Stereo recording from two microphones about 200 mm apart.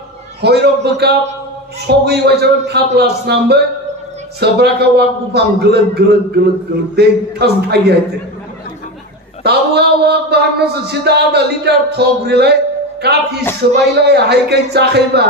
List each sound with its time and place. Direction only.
0.4 s a man's voice: 55° right (ahead or behind)
9.4 s a man's voice: 55° right (ahead or behind)